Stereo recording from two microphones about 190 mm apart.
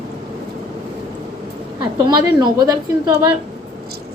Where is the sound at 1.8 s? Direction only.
25° right (ahead or behind).